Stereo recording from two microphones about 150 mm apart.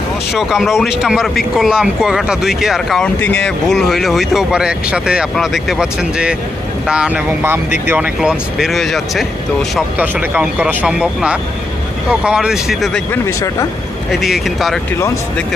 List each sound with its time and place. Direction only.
0.3 s speech: 5° right (ahead or behind)
13.2 s speech: 20° left (ahead or behind)
14.1 s speech: centre (ahead or behind)